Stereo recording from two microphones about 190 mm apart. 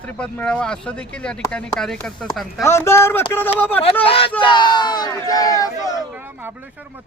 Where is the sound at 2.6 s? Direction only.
15° left (ahead or behind).